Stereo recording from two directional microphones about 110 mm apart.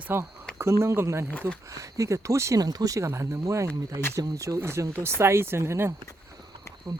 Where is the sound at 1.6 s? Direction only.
30° right (ahead or behind).